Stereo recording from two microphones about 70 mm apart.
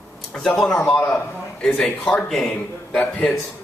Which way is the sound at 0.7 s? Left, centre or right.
Centre.